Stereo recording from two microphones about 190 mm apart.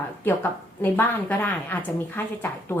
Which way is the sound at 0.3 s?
10° left (ahead or behind).